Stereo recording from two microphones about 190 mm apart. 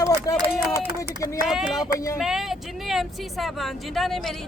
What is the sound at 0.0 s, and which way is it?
Run, 20° left (ahead or behind).